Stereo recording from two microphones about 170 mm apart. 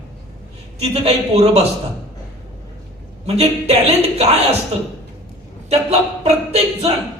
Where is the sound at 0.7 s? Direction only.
35° right (ahead or behind).